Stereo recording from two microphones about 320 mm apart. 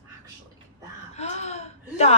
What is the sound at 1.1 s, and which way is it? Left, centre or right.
Speech, centre.